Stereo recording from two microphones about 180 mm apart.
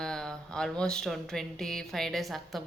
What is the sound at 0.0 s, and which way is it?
Speech, 5° left (ahead or behind).